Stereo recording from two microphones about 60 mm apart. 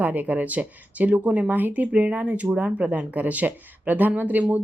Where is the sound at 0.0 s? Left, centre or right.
Right.